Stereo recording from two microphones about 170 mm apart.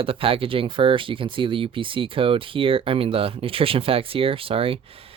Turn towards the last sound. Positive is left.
turn(degrees=-35)  # may be behind; listen again after turning